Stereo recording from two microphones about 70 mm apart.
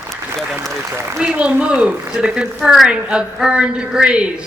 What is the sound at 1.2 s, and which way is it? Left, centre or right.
A woman's voice, centre.